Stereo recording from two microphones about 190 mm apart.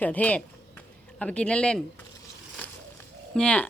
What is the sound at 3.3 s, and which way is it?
Speech, 5° left (ahead or behind).